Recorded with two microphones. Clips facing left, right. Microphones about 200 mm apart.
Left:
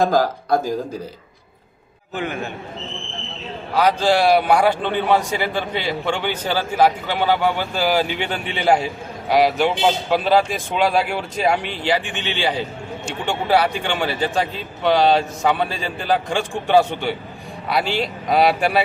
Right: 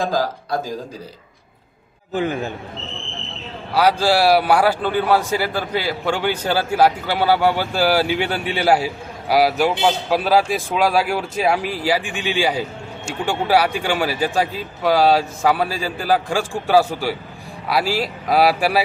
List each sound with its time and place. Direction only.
2.1 s a man's voice: 30° right (ahead or behind)
3.8 s a man's voice: 10° right (ahead or behind)